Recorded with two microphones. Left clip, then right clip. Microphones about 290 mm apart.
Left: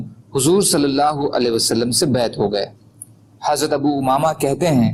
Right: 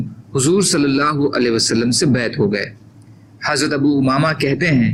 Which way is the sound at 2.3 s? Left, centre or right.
Left.